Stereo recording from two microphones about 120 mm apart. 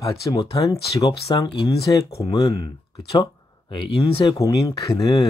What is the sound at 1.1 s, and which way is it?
Speech, 50° left (ahead or behind).